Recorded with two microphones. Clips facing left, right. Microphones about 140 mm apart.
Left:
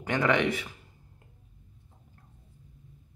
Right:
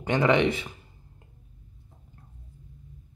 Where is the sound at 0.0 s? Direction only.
25° right (ahead or behind).